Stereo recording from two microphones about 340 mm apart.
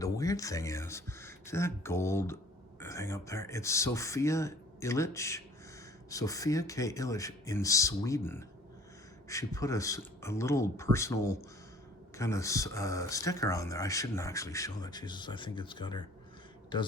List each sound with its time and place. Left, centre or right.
0.0 s speech: centre